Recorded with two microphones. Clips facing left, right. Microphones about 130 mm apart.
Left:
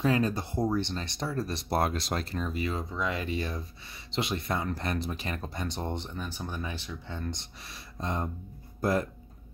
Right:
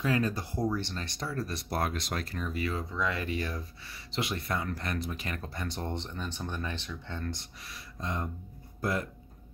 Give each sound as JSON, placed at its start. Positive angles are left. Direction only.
{"t": 0.0, "sound": "speech", "side_deg": 25}